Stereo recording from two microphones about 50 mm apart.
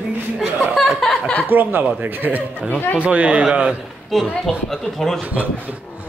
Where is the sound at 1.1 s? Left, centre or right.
Left.